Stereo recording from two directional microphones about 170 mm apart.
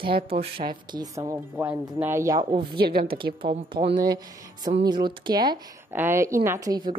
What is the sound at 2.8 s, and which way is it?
Speech, 65° right (ahead or behind).